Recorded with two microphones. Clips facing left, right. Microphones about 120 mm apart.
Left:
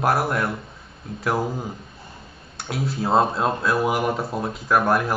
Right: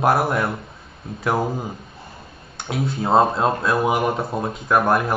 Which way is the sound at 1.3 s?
20° right (ahead or behind).